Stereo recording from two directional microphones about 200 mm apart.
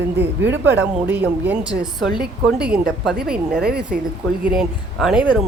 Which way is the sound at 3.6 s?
50° right (ahead or behind).